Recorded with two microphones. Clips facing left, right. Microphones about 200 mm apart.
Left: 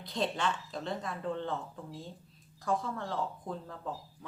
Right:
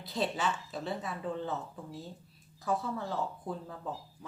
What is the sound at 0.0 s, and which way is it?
A woman's voice, 5° right (ahead or behind).